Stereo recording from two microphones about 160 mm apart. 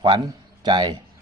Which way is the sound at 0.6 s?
25° right (ahead or behind).